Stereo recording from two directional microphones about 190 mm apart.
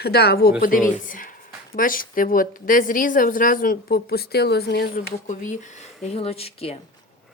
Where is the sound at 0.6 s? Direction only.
45° left (ahead or behind).